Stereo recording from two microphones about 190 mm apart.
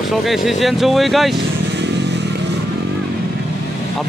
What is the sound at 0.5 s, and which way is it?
Speech, centre (ahead or behind).